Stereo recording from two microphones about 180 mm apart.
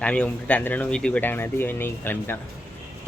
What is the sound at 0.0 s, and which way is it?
Speech, 5° left (ahead or behind).